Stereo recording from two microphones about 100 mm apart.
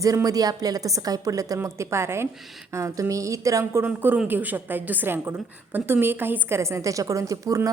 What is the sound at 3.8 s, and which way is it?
A woman's voice, 20° right (ahead or behind).